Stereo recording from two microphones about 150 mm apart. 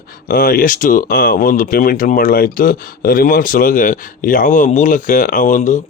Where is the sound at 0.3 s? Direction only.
75° left (ahead or behind).